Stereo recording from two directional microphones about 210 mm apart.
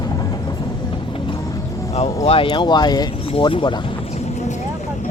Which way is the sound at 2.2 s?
25° left (ahead or behind).